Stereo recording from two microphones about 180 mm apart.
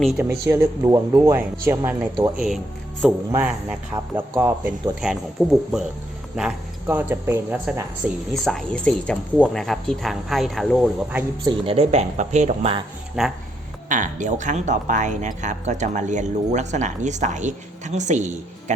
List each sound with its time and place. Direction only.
0.0 s a woman's voice: centre (ahead or behind)
0.4 s speech: 20° right (ahead or behind)
3.3 s speech: 10° right (ahead or behind)
4.9 s a woman's voice: 5° right (ahead or behind)
6.8 s a woman's voice: 15° right (ahead or behind)
11.4 s speech: 30° right (ahead or behind)
13.2 s a woman's voice: 5° right (ahead or behind)
13.8 s speech: 45° right (ahead or behind)